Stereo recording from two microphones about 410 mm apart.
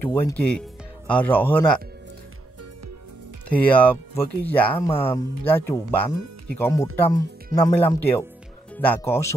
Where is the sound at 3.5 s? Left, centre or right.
Centre.